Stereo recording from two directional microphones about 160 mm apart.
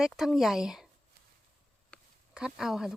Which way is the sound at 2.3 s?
5° right (ahead or behind).